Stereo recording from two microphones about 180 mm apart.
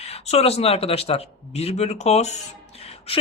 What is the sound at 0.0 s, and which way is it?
Speech, 35° left (ahead or behind).